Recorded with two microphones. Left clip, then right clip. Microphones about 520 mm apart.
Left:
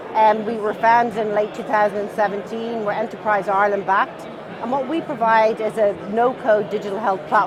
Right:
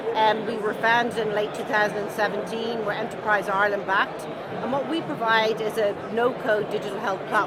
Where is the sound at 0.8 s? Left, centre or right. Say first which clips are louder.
Left 6 dB; left.